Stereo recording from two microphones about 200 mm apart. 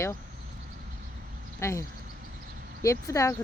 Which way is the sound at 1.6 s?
15° left (ahead or behind).